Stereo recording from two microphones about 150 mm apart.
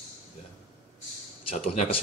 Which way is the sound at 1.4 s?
45° left (ahead or behind).